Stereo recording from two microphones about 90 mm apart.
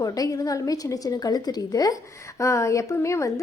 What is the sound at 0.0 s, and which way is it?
A woman's voice, 40° left (ahead or behind).